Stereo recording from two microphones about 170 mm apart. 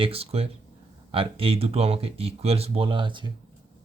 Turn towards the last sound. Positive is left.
turn(degrees=-30)  # may be behind; listen again after turning